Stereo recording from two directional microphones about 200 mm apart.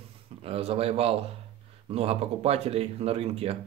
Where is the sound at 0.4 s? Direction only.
30° right (ahead or behind).